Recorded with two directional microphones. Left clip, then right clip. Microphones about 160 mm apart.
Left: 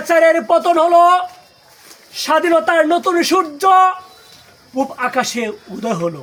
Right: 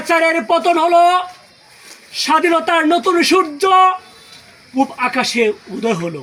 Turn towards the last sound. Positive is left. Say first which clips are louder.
# right 4 dB
turn(degrees=20)  # may be behind; listen again after turning